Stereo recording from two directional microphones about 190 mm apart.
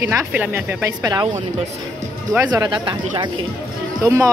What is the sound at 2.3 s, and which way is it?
Speech, 15° right (ahead or behind).